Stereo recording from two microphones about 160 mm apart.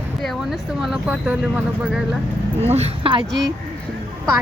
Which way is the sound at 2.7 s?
40° right (ahead or behind).